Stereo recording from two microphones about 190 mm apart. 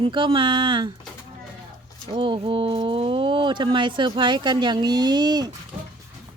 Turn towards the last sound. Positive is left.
turn(degrees=-20)  # may be behind; listen again after turning